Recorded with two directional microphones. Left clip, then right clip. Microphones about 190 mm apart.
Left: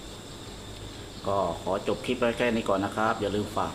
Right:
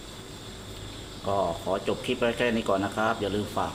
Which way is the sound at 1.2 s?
Centre (ahead or behind).